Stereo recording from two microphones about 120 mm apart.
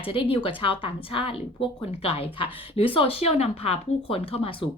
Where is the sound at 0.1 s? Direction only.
50° left (ahead or behind).